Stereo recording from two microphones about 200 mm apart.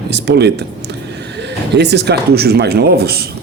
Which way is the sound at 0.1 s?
55° right (ahead or behind).